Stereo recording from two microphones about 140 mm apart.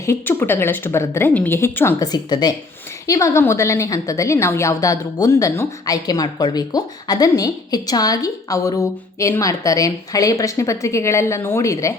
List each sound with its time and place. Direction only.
0.0 s a woman's voice: 20° left (ahead or behind)
2.0 s a woman's voice: 30° left (ahead or behind)